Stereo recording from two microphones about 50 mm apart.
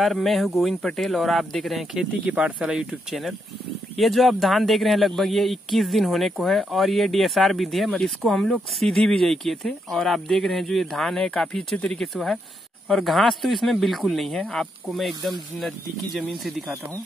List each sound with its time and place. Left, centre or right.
0.0 s speech: centre
2.2 s speech: right
2.7 s speech: centre